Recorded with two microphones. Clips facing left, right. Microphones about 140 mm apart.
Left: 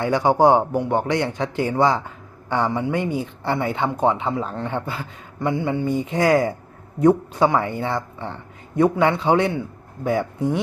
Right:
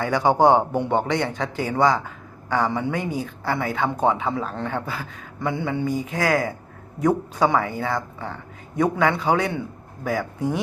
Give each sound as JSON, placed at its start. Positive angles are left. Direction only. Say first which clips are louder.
{"t": 0.0, "sound": "speech", "louder": "left 1 dB", "side_deg": 15}
{"t": 5.8, "sound": "speech", "louder": "left 4 dB", "side_deg": 30}